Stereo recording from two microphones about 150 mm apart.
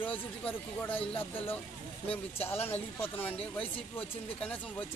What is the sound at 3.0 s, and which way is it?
Speech, 10° left (ahead or behind).